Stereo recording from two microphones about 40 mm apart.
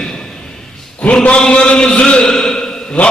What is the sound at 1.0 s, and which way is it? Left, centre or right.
A man's voice, left.